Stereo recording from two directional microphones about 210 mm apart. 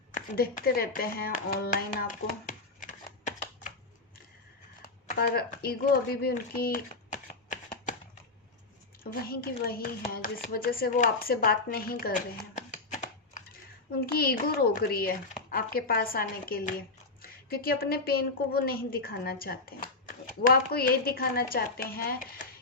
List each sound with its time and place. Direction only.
0.1 s speech: 45° left (ahead or behind)
5.0 s speech: 45° left (ahead or behind)
9.0 s a woman's voice: 45° left (ahead or behind)
14.1 s a woman's voice: 45° left (ahead or behind)